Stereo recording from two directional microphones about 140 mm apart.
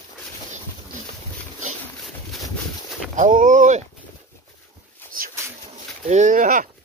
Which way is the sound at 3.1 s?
65° right (ahead or behind).